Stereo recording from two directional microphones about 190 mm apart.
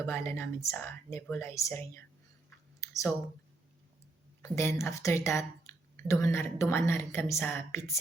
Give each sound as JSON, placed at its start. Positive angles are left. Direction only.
{"t": 0.1, "sound": "speech", "side_deg": 10}
{"t": 2.8, "sound": "a sound", "side_deg": 15}
{"t": 4.4, "sound": "speech", "side_deg": 15}